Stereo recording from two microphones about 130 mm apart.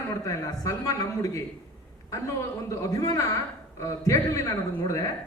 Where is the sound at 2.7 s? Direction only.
25° left (ahead or behind).